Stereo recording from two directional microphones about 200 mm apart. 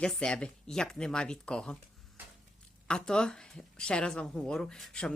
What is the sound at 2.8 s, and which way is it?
Speech, 5° left (ahead or behind).